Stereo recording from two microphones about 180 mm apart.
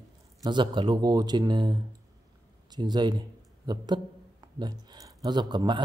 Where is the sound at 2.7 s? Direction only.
25° right (ahead or behind).